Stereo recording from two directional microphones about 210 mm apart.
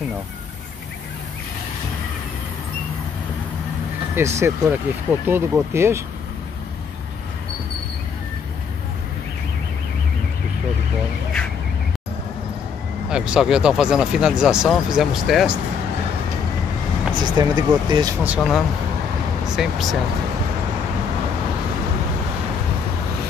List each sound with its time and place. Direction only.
4.1 s speech: 15° right (ahead or behind)
13.1 s speech: 5° right (ahead or behind)
17.1 s speech: 20° right (ahead or behind)
18.2 s speech: 5° right (ahead or behind)